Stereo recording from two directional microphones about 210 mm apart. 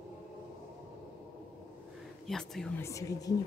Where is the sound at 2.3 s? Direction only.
Centre (ahead or behind).